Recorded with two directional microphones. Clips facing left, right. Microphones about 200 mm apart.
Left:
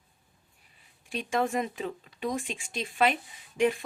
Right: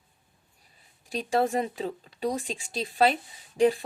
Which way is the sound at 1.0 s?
35° right (ahead or behind).